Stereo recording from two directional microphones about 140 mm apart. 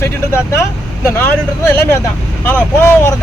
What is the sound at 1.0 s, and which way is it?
Speech, 15° left (ahead or behind).